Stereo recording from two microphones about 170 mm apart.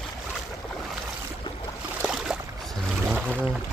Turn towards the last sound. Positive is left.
turn(degrees=-10)  # may be behind; listen again after turning